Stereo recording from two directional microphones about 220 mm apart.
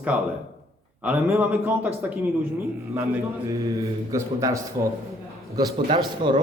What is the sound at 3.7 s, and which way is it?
Speech, 15° right (ahead or behind).